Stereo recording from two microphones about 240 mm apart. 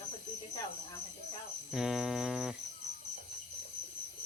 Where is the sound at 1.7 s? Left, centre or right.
Centre.